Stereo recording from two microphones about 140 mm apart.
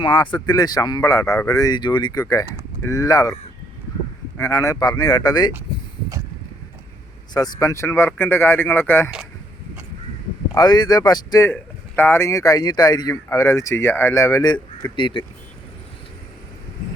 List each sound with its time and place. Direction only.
0.0 s speech: 35° left (ahead or behind)
4.4 s speech: 25° left (ahead or behind)
7.3 s speech: 25° left (ahead or behind)
10.5 s speech: 30° left (ahead or behind)
14.9 s speech: 35° left (ahead or behind)